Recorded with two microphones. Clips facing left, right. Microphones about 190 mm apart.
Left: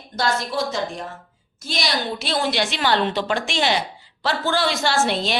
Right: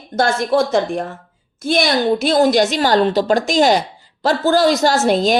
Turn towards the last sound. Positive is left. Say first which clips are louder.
# right 7 dB
turn(degrees=-45)  # may be behind; listen again after turning